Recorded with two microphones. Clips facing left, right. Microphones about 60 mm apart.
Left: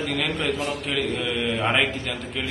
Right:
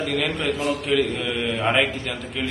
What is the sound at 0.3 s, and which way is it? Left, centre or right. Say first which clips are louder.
A man's voice: right 2 dB; centre.